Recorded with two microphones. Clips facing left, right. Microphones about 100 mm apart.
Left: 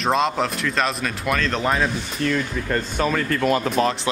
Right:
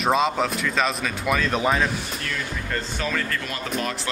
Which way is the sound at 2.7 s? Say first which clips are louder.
Left 6 dB; 45° left (ahead or behind).